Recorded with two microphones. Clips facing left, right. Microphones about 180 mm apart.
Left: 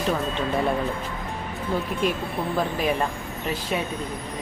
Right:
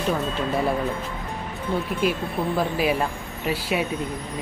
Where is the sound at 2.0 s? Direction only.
5° right (ahead or behind).